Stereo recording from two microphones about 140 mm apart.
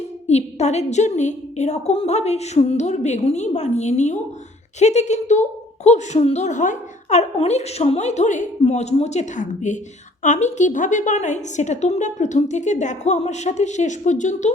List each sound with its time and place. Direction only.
0.3 s a woman's voice: 50° left (ahead or behind)